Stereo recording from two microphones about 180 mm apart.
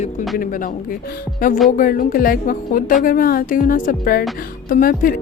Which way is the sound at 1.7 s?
50° left (ahead or behind).